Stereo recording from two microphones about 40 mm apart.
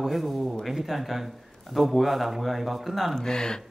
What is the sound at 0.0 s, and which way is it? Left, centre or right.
Speech, centre.